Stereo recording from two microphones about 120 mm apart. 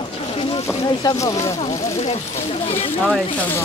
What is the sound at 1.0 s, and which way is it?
Speech, 30° left (ahead or behind).